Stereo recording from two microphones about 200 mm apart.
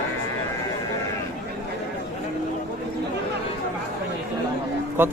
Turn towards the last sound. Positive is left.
turn(degrees=-10)  # may be behind; listen again after turning